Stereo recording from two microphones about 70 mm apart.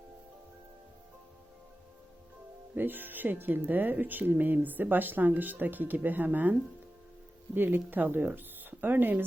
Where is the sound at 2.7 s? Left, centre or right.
Right.